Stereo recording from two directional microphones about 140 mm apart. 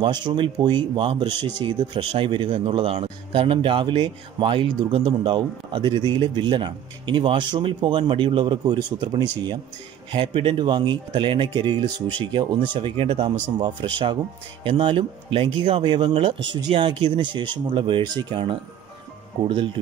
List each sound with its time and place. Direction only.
0.0 s speech: 35° right (ahead or behind)
10.1 s speech: 40° right (ahead or behind)